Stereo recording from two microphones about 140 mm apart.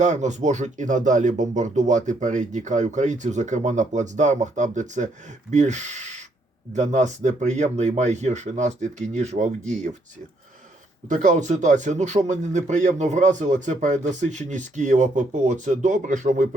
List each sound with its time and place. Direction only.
0.0 s a man's voice: 60° right (ahead or behind)
11.1 s a man's voice: 60° right (ahead or behind)